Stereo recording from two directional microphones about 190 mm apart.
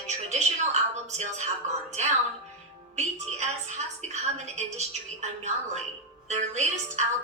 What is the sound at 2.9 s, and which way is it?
A woman's voice, 40° right (ahead or behind).